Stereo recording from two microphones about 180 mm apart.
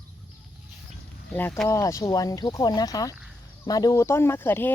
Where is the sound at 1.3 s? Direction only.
10° left (ahead or behind).